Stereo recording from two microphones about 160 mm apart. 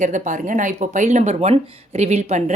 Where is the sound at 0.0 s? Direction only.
50° right (ahead or behind).